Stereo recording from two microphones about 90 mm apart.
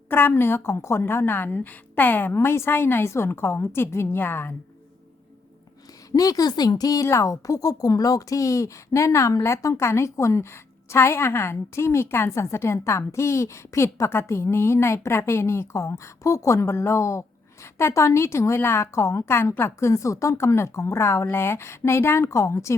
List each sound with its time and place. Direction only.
0.1 s a woman's voice: 25° left (ahead or behind)
6.1 s a woman's voice: 45° left (ahead or behind)